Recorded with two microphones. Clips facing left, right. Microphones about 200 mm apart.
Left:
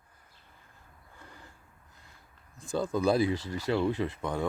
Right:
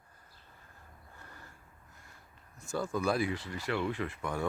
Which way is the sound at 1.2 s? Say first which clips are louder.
Left 3 dB; 15° left (ahead or behind).